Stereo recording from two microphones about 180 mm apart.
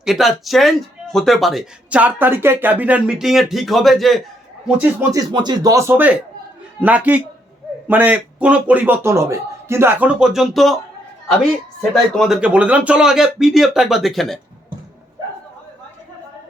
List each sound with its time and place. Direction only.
0.0 s speech: centre (ahead or behind)
4.8 s a man's voice: 15° right (ahead or behind); by 10.8 s centre (ahead or behind)
12.1 s speech: centre (ahead or behind)